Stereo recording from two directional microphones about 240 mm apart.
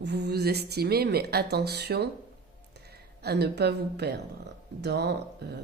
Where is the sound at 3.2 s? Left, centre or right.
Right.